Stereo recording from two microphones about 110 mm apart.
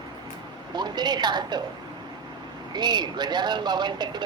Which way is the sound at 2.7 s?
40° right (ahead or behind).